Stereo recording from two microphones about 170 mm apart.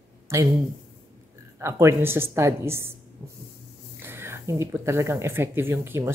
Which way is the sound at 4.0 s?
15° right (ahead or behind).